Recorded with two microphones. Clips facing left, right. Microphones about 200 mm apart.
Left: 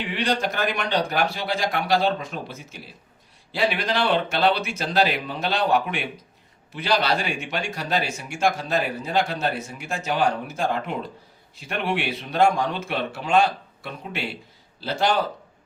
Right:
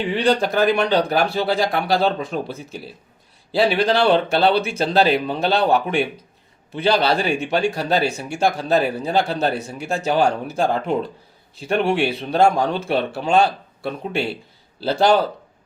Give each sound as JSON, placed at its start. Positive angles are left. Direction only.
{"t": 0.3, "sound": "a man's voice", "side_deg": -35}
{"t": 3.5, "sound": "a man's voice", "side_deg": -35}